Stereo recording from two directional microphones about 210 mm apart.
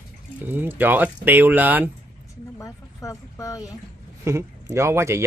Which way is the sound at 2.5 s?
15° left (ahead or behind).